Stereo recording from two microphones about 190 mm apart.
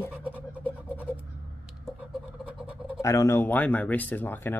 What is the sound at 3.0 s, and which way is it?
Speech, 15° left (ahead or behind).